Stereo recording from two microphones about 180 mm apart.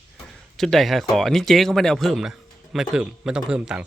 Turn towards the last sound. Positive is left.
turn(degrees=-5)  # may be behind; listen again after turning